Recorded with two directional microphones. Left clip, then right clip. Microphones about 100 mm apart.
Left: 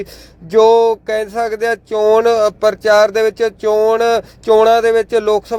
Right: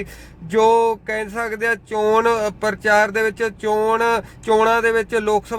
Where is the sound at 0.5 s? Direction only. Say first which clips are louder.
Left 5 dB; 35° left (ahead or behind).